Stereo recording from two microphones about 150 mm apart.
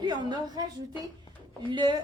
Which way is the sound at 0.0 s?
30° right (ahead or behind).